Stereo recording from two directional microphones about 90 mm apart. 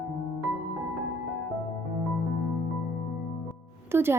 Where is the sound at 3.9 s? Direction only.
25° right (ahead or behind).